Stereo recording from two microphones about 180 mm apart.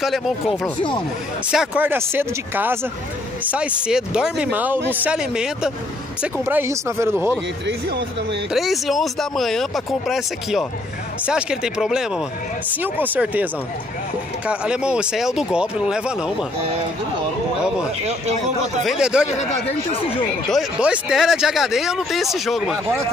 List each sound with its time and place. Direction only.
0.5 s speech: 30° left (ahead or behind)
1.5 s speech: 5° right (ahead or behind)
7.6 s speech: 75° right (ahead or behind)
8.5 s speech: centre (ahead or behind)
18.9 s speech: 5° right (ahead or behind)
19.2 s speech: 35° left (ahead or behind)
20.4 s speech: centre (ahead or behind)